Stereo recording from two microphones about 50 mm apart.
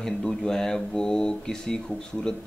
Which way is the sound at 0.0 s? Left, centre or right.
Centre.